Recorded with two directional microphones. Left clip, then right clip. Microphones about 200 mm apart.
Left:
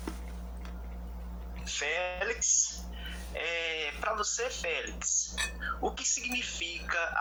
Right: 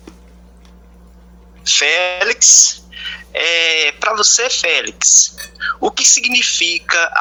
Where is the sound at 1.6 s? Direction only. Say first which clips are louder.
Right 19 dB; 55° right (ahead or behind).